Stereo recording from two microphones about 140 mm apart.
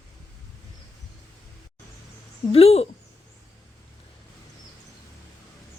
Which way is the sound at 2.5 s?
45° left (ahead or behind).